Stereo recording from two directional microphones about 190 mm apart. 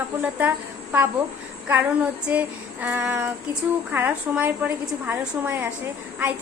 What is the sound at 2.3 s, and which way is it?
A woman's voice, 10° right (ahead or behind).